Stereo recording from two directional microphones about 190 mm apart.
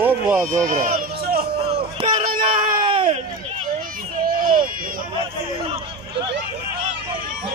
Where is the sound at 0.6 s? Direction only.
45° right (ahead or behind).